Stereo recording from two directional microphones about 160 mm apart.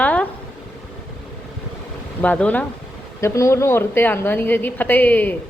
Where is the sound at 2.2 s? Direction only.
10° left (ahead or behind).